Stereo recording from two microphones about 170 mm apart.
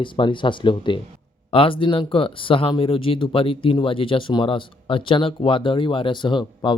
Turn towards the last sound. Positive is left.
turn(degrees=25)  # may be behind; listen again after turning